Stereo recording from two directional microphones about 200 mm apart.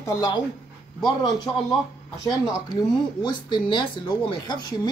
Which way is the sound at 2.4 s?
20° left (ahead or behind).